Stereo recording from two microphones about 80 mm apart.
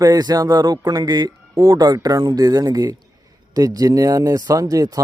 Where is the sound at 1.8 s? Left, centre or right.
Right.